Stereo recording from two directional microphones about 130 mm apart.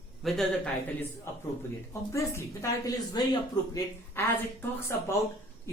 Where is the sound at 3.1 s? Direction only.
35° left (ahead or behind).